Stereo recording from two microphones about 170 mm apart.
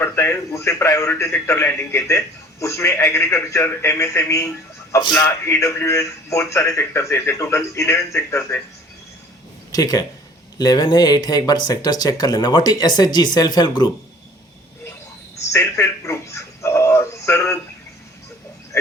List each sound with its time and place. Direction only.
0.0 s a man's voice: 15° left (ahead or behind)
9.7 s speech: 20° left (ahead or behind)
15.5 s speech: 15° left (ahead or behind)